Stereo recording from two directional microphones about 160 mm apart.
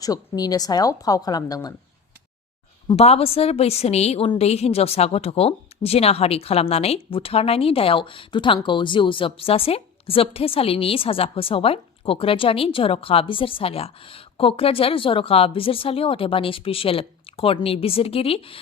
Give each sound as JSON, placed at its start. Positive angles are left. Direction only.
{"t": 0.0, "sound": "a woman's voice", "side_deg": 25}
{"t": 2.8, "sound": "a woman's voice", "side_deg": 40}